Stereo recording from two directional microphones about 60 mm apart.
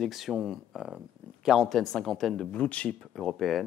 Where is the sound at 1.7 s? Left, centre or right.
Centre.